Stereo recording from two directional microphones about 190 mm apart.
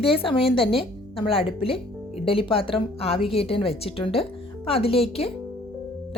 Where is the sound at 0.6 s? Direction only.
30° left (ahead or behind).